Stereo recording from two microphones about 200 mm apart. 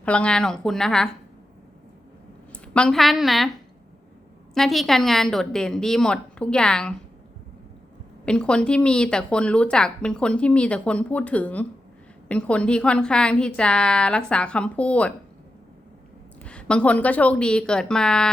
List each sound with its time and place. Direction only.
0.0 s a woman's voice: 5° left (ahead or behind)
2.5 s a woman's voice: 5° left (ahead or behind)
4.5 s a woman's voice: centre (ahead or behind)
8.2 s a woman's voice: 5° left (ahead or behind)
16.4 s a woman's voice: 5° left (ahead or behind)